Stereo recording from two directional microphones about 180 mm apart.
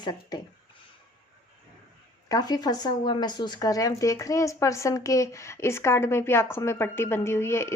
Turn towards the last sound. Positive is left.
turn(degrees=15)  # may be behind; listen again after turning